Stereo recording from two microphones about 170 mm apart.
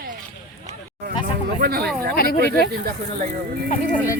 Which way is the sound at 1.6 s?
65° right (ahead or behind).